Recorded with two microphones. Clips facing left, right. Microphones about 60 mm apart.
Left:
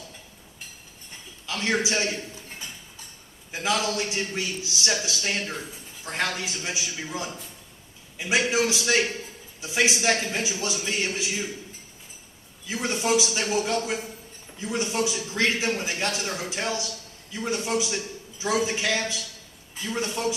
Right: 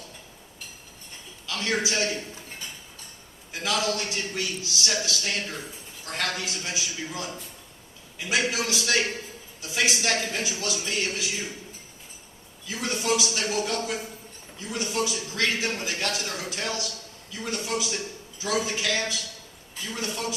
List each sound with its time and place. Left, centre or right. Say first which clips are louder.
1.5 s a man's voice: left 2 dB; left
3.5 s a man's voice: left 1 dB; left
12.6 s a man's voice: left 2 dB; left